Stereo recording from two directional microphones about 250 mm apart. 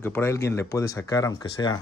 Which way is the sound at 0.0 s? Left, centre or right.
Centre.